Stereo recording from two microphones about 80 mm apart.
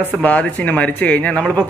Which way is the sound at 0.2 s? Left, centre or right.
Centre.